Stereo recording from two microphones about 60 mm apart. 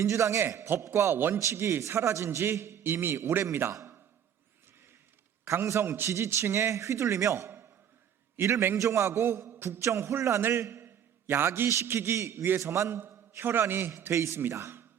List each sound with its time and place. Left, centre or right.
0.0 s a man's voice: right
1.1 s a man's voice: right
1.5 s a man's voice: right
3.7 s a man's voice: right
5.6 s a man's voice: right
9.0 s a man's voice: right
10.5 s a sound: right
11.9 s a man's voice: right
14.0 s a man's voice: right